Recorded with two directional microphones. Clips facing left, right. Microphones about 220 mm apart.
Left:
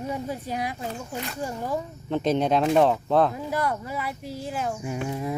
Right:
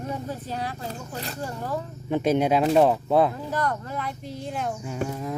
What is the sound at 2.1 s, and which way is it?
Speech, 10° right (ahead or behind).